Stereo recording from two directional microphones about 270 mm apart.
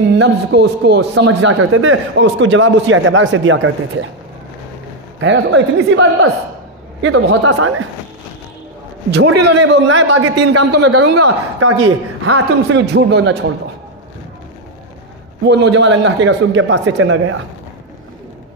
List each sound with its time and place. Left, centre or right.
0.2 s a man's voice: right
1.4 s a man's voice: right
5.2 s a man's voice: right
9.4 s a man's voice: right
12.8 s a man's voice: right
15.4 s a man's voice: right